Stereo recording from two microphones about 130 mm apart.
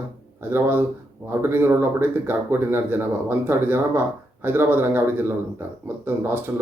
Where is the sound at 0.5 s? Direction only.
15° right (ahead or behind).